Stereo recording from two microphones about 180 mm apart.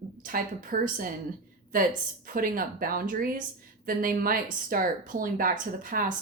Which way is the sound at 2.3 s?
50° right (ahead or behind).